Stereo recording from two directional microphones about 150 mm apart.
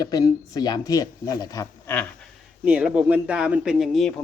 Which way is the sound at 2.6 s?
5° right (ahead or behind).